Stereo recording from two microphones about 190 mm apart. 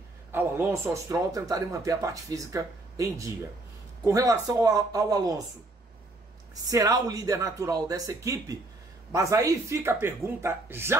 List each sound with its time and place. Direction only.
0.3 s a man's voice: 10° right (ahead or behind)
6.7 s a man's voice: 20° right (ahead or behind)